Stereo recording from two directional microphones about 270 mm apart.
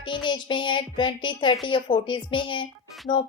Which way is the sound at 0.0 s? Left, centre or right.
Centre.